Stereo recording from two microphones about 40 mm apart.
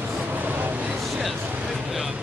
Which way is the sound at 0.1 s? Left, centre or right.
Right.